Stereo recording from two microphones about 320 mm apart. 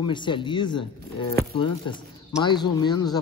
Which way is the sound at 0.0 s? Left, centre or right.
Centre.